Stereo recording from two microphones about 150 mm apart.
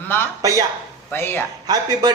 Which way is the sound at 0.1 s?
15° left (ahead or behind).